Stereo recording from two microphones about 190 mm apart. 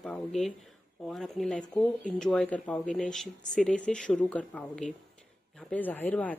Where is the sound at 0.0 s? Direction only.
5° left (ahead or behind).